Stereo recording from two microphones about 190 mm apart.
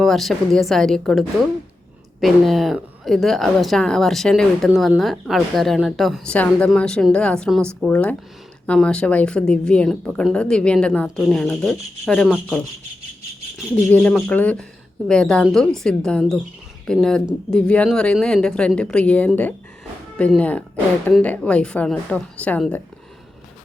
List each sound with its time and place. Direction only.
0.0 s a woman's voice: centre (ahead or behind)
13.9 s a woman's voice: 5° left (ahead or behind)